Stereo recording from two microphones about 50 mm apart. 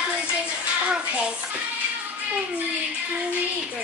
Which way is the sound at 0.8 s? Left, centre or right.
Right.